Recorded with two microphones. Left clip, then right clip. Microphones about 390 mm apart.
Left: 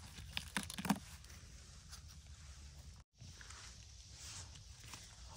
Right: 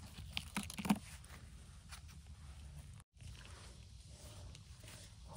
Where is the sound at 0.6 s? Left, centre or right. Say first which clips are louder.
Right 1 dB; left.